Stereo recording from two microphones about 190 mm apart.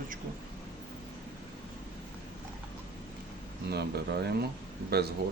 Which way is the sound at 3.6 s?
60° right (ahead or behind).